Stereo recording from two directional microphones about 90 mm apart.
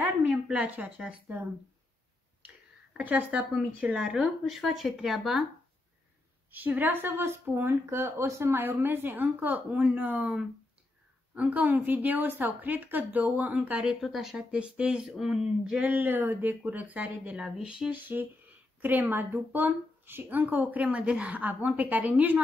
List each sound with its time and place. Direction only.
0.5 s speech: 15° right (ahead or behind)
2.4 s speech: 15° right (ahead or behind)
6.5 s speech: 20° right (ahead or behind)
14.0 s speech: centre (ahead or behind)
14.3 s speech: 10° right (ahead or behind)
15.9 s speech: 20° right (ahead or behind)
17.9 s speech: 20° right (ahead or behind)